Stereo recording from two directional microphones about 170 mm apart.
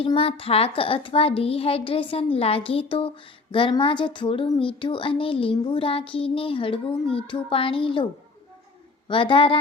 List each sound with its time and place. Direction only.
0.0 s speech: 35° left (ahead or behind)
9.0 s speech: 30° left (ahead or behind)